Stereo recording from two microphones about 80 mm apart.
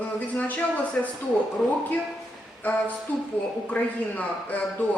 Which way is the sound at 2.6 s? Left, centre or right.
Left.